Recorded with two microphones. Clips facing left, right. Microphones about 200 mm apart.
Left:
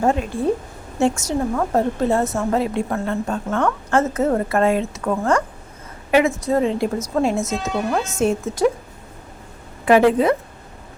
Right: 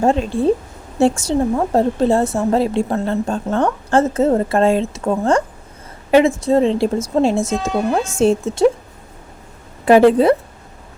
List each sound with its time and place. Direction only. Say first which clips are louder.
0.0 s a woman's voice: right 4 dB; 30° right (ahead or behind)
10.1 s a woman's voice: right 4 dB; 35° right (ahead or behind)